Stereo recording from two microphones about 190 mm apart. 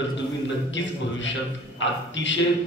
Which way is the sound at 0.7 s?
75° left (ahead or behind).